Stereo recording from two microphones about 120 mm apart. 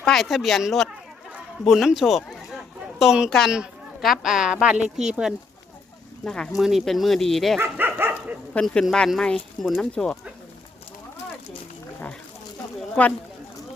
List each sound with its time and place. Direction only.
0.0 s speech: centre (ahead or behind)
6.2 s speech: 5° left (ahead or behind)
7.6 s dog: 15° right (ahead or behind)
8.5 s speech: 5° left (ahead or behind)
13.0 s speech: 10° left (ahead or behind)